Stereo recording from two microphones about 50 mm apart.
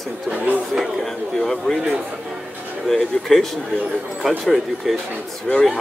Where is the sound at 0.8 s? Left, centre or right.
Centre.